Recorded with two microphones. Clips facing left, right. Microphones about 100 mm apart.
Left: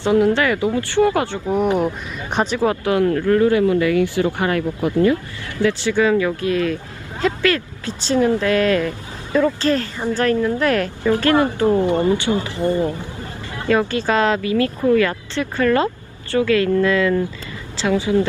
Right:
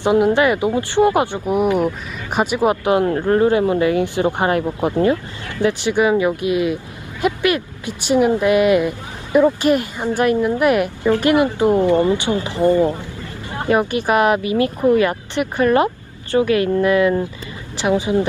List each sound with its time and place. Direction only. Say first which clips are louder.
0.0 s a woman's voice: right 2 dB; 20° right (ahead or behind)